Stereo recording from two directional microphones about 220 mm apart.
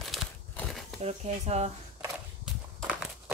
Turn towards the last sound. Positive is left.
turn(degrees=-5)  # may be behind; listen again after turning